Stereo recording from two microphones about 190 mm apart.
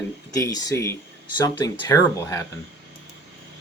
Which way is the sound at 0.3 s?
15° left (ahead or behind).